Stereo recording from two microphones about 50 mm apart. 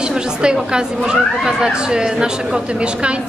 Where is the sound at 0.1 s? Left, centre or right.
Centre.